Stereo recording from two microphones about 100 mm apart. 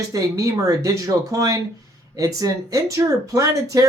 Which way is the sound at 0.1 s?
35° right (ahead or behind).